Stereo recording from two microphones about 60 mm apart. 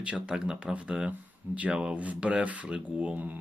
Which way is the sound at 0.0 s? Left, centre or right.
Centre.